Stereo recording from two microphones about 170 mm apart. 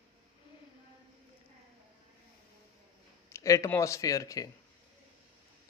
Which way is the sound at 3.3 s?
20° left (ahead or behind).